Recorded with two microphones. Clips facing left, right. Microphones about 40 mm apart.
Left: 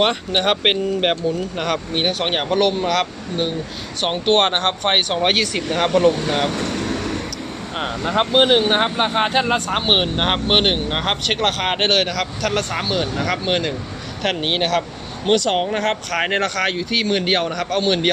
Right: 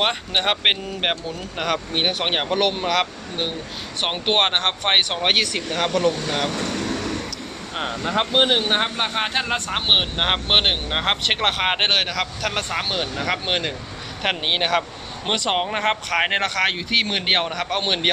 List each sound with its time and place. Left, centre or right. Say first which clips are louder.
0.0 s speech: left 3 dB; centre
5.6 s speech: left 8 dB; centre; by 18.1 s right